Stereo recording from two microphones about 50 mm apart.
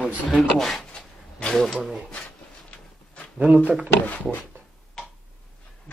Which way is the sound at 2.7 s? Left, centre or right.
Left.